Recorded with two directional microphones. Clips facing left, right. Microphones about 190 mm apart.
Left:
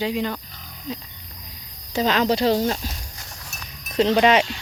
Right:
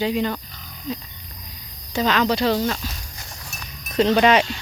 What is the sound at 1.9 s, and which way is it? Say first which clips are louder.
Speech: even; 35° left (ahead or behind).